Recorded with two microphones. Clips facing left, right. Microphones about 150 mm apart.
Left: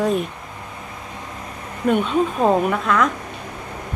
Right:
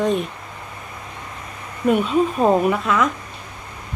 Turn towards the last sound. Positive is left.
turn(degrees=-5)  # may be behind; listen again after turning